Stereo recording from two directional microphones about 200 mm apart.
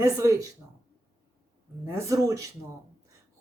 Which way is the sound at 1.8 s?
15° right (ahead or behind).